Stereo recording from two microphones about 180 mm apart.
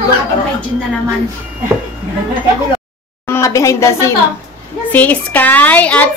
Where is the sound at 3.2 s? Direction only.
15° left (ahead or behind).